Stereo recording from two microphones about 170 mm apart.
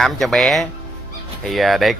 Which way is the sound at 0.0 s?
Centre (ahead or behind).